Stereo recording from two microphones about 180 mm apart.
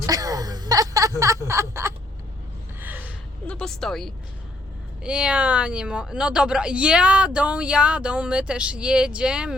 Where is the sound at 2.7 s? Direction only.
10° right (ahead or behind).